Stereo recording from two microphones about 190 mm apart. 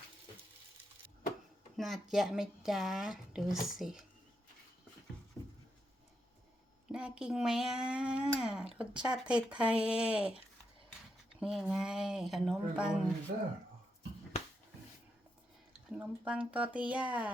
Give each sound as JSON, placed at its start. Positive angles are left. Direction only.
{"t": 1.7, "sound": "speech", "side_deg": 0}
{"t": 6.8, "sound": "speech", "side_deg": -5}
{"t": 11.3, "sound": "speech", "side_deg": -5}
{"t": 16.0, "sound": "a woman's voice", "side_deg": -5}